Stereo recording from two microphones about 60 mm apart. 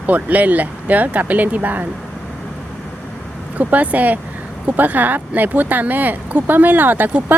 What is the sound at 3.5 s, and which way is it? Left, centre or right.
Speech, right.